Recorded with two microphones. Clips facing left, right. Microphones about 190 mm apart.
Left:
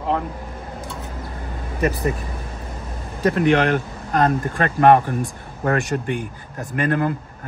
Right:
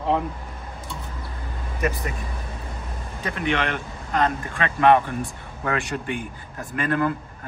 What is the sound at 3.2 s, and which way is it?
Speech, 45° left (ahead or behind).